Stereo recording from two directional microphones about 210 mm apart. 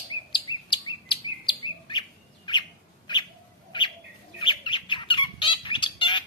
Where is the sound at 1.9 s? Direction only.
20° left (ahead or behind).